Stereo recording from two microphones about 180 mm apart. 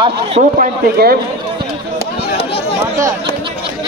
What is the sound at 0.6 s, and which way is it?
Speech, 55° right (ahead or behind).